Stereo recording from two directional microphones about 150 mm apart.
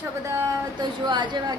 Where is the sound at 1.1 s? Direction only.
30° right (ahead or behind).